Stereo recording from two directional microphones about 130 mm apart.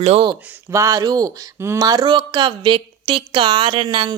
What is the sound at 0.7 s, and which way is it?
Speech, 25° right (ahead or behind).